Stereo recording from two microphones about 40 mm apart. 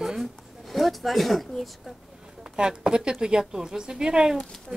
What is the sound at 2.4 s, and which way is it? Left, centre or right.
A woman's voice, centre.